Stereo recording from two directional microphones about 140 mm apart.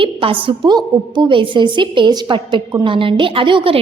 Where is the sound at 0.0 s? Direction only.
40° right (ahead or behind).